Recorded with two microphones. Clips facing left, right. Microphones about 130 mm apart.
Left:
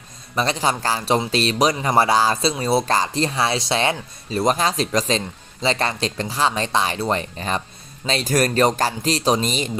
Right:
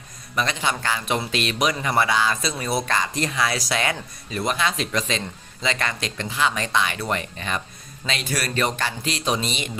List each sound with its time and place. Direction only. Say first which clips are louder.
0.3 s speech: left 4 dB; 35° left (ahead or behind)